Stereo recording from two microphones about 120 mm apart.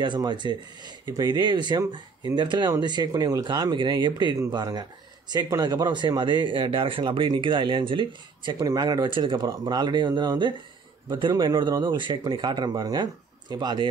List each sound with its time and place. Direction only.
0.0 s speech: 40° right (ahead or behind)
8.5 s speech: 30° right (ahead or behind)